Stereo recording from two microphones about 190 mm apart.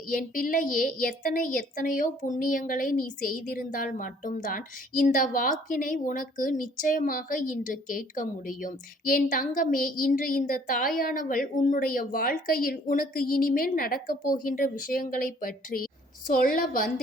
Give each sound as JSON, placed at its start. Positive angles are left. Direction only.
{"t": 0.1, "sound": "a woman's voice", "side_deg": 45}